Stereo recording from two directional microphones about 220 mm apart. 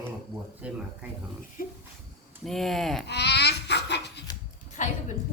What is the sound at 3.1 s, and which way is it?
Laughter, 50° left (ahead or behind).